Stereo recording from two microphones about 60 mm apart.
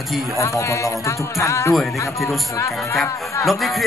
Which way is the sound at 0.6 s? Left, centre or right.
Left.